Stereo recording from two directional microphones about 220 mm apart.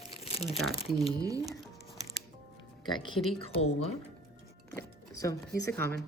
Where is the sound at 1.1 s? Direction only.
15° right (ahead or behind).